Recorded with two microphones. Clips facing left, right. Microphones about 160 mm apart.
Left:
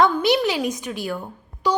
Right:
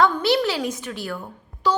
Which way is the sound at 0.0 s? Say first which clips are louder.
Left 1 dB; 15° left (ahead or behind).